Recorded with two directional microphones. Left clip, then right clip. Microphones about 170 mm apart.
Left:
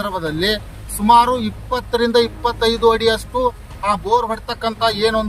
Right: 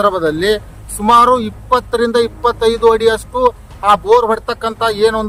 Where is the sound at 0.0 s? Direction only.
35° right (ahead or behind).